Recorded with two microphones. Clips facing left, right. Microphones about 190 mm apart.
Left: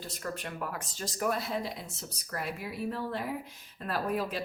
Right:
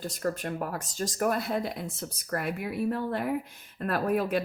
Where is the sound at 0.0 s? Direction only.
45° right (ahead or behind).